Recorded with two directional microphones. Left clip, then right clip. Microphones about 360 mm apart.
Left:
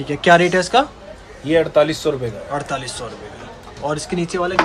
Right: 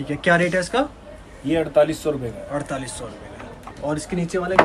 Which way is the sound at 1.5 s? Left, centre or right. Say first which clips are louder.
Left 3 dB; left.